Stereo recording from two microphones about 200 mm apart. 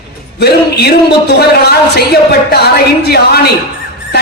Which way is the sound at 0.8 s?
55° left (ahead or behind).